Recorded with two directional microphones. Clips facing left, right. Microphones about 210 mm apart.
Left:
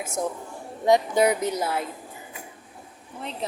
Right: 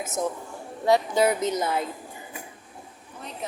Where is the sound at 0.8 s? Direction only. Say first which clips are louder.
Left 1 dB; 20° left (ahead or behind).